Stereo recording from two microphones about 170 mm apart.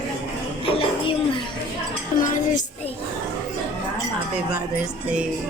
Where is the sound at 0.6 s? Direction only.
30° left (ahead or behind).